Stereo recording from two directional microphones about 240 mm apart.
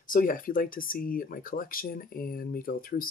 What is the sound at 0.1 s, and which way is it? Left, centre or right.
Speech, left.